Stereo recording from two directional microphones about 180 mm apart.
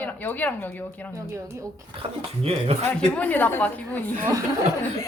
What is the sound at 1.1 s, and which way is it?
Speech, 15° right (ahead or behind).